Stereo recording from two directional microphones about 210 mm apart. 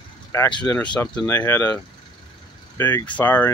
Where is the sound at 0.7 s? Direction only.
5° left (ahead or behind).